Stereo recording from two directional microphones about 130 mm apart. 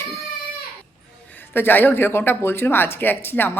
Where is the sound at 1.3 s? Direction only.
15° left (ahead or behind).